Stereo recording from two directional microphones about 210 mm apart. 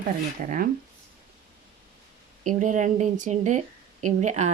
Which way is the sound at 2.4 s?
35° right (ahead or behind).